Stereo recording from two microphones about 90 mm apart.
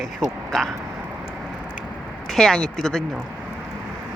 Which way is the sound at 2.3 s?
5° left (ahead or behind).